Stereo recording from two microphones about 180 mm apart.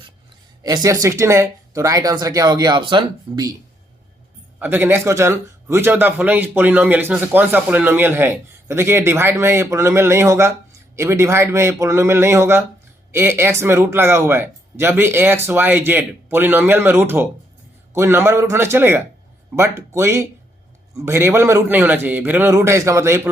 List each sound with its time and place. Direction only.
0.6 s speech: 20° right (ahead or behind)
4.6 s a man's voice: 10° right (ahead or behind)